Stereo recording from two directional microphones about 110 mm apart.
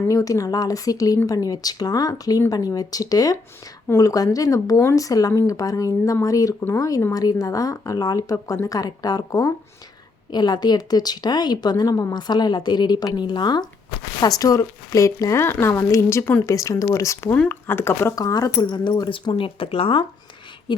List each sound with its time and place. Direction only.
0.1 s a woman's voice: 30° left (ahead or behind)
17.3 s speech: 15° left (ahead or behind)
18.2 s speech: 30° left (ahead or behind); by 20.8 s 50° left (ahead or behind)